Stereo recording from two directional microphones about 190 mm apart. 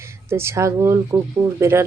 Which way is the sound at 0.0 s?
15° right (ahead or behind).